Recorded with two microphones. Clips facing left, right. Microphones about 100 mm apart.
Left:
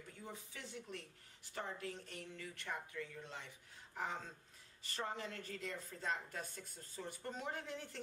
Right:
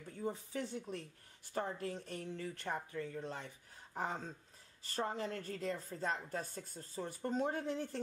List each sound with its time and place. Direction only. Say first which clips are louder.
0.1 s a woman's voice: right 13 dB; 40° right (ahead or behind)